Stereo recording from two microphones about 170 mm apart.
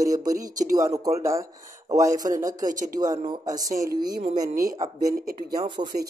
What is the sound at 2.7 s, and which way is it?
Speech, 50° right (ahead or behind).